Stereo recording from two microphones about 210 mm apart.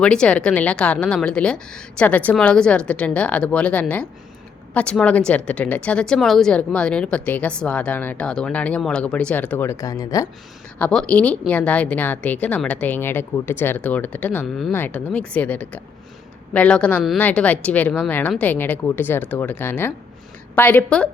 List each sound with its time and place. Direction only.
0.0 s a woman's voice: 5° left (ahead or behind)